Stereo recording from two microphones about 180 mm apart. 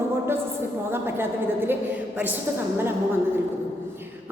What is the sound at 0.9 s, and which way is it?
Speech, 10° right (ahead or behind).